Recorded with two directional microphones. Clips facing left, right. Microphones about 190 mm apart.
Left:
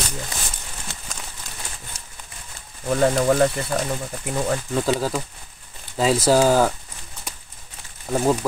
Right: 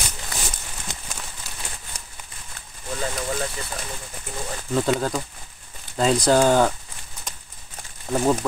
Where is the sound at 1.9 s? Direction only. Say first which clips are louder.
Right 2 dB; 60° right (ahead or behind).